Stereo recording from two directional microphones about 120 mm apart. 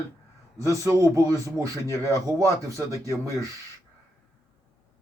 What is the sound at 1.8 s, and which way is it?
Speech, 25° left (ahead or behind).